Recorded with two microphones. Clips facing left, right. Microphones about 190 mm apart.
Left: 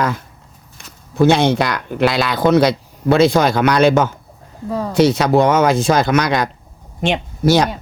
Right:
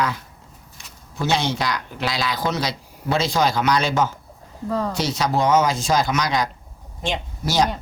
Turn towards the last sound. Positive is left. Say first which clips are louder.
# left 7 dB
turn(degrees=60)  # may be behind; listen again after turning